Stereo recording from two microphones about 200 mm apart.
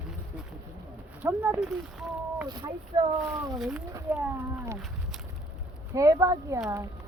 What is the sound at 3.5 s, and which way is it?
Speech, 5° right (ahead or behind).